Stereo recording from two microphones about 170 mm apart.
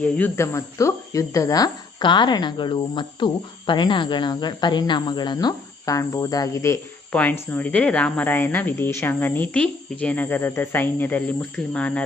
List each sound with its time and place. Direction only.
0.0 s speech: 15° left (ahead or behind)